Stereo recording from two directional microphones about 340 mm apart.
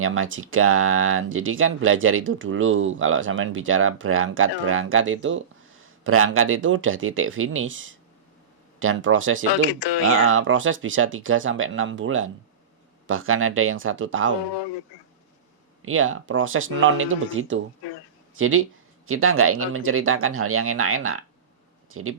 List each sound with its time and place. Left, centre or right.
0.0 s speech: right
15.8 s speech: right